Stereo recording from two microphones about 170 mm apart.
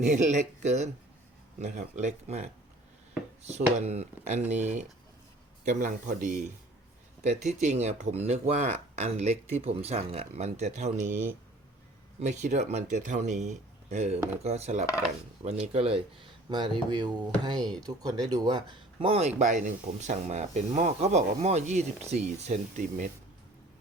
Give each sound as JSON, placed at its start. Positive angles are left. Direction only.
{"t": 0.1, "sound": "speech", "side_deg": -45}
{"t": 5.6, "sound": "speech", "side_deg": -50}
{"t": 12.2, "sound": "speech", "side_deg": -45}